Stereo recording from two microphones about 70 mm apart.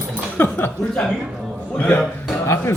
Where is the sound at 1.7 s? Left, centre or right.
Left.